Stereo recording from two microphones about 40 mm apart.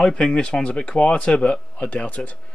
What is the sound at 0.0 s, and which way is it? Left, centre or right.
Speech, centre.